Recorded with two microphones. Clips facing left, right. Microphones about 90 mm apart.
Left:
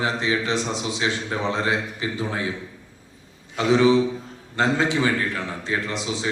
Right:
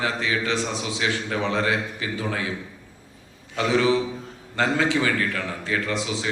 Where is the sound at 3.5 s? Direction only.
20° left (ahead or behind).